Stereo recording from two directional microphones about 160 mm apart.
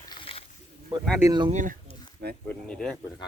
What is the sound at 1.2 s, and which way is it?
Speech, 25° right (ahead or behind).